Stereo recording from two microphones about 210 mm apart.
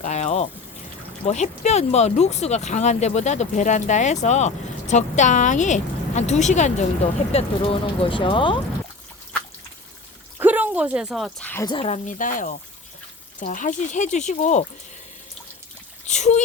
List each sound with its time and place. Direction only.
0.0 s water: 35° left (ahead or behind)
1.2 s speech: 35° left (ahead or behind)
10.3 s speech: 10° right (ahead or behind)
11.6 s speech: 25° left (ahead or behind)
16.0 s speech: 35° left (ahead or behind)